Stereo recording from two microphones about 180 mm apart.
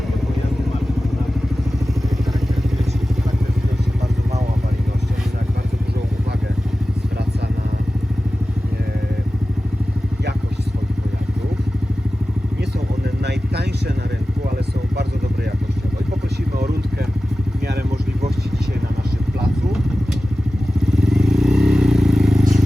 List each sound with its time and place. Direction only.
13.2 s vehicle: 65° right (ahead or behind)
20.9 s vehicle: centre (ahead or behind)